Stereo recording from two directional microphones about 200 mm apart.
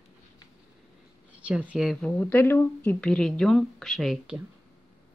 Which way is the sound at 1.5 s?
5° right (ahead or behind).